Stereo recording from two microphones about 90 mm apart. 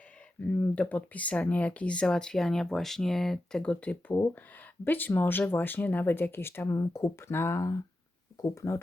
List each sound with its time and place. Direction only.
0.3 s speech: 20° left (ahead or behind); by 8.8 s 35° left (ahead or behind)